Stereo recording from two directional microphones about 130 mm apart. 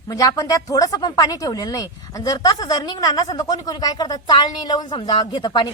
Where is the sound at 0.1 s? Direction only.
25° left (ahead or behind).